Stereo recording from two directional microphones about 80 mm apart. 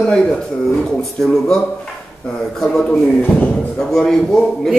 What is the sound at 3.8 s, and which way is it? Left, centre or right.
Speech, centre.